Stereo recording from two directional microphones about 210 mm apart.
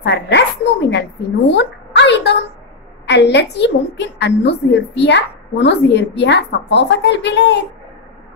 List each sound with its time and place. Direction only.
0.0 s a woman's voice: 50° left (ahead or behind)